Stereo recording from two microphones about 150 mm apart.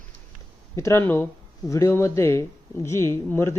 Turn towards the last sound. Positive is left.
turn(degrees=15)  # may be behind; listen again after turning